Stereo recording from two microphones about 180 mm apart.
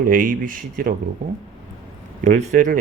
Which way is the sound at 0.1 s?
50° right (ahead or behind).